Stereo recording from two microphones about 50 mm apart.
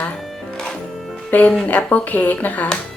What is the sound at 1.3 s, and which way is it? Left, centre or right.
Speech, left.